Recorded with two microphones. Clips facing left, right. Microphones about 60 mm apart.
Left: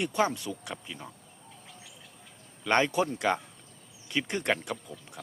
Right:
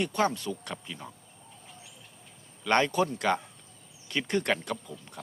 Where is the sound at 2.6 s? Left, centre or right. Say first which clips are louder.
Right 1 dB; centre.